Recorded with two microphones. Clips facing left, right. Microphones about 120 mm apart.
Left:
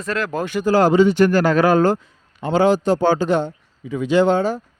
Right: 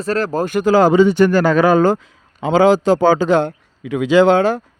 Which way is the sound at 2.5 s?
90° right.